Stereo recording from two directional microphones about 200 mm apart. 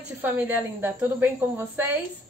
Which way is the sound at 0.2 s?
10° right (ahead or behind).